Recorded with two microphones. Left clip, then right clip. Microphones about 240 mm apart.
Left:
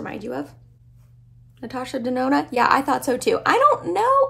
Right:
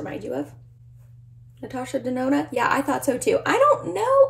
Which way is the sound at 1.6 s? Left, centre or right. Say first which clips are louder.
Left 1 dB; centre.